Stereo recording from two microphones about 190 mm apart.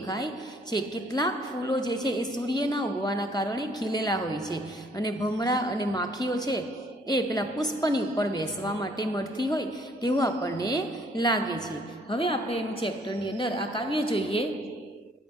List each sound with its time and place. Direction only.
0.0 s a woman's voice: 20° left (ahead or behind)